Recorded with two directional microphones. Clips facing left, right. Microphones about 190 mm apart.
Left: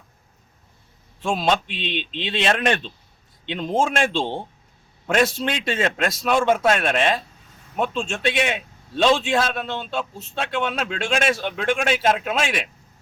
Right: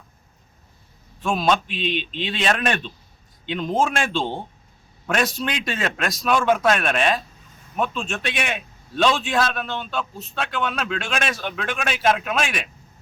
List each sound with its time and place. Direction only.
1.2 s a man's voice: 25° left (ahead or behind)